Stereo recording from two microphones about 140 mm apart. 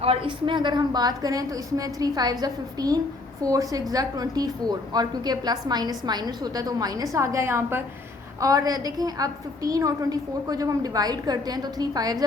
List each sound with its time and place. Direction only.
0.0 s a woman's voice: 40° right (ahead or behind)